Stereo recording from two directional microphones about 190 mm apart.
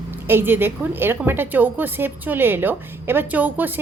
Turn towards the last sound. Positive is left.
turn(degrees=-10)  # may be behind; listen again after turning